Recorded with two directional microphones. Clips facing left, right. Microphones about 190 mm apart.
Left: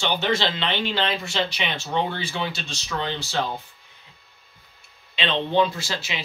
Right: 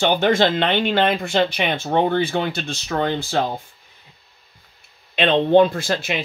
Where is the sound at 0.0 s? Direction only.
50° right (ahead or behind).